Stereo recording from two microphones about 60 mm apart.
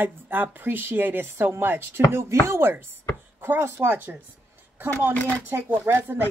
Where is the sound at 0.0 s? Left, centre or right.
Right.